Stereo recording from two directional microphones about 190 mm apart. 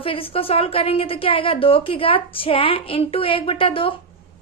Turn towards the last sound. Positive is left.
turn(degrees=30)  # may be behind; listen again after turning